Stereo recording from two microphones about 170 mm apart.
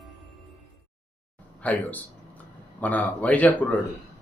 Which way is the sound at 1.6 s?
10° left (ahead or behind).